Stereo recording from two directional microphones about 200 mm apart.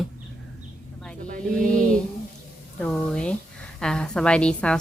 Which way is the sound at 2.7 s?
5° left (ahead or behind).